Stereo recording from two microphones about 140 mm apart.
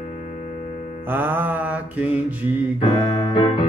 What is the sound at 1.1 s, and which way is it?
Speech, 15° right (ahead or behind).